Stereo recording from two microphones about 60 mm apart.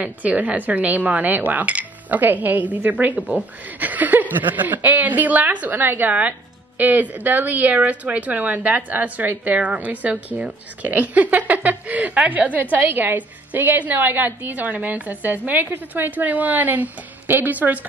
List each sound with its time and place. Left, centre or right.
0.0 s a woman's voice: right